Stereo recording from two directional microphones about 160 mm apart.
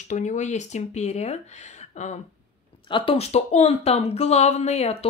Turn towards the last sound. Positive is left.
turn(degrees=40)  # may be behind; listen again after turning